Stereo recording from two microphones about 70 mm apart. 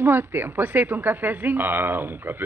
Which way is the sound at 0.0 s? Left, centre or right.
Right.